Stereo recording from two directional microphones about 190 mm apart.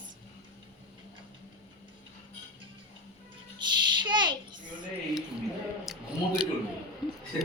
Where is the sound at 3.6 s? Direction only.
25° right (ahead or behind).